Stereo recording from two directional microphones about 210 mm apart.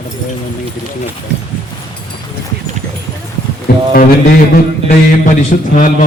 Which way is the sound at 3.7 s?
45° left (ahead or behind).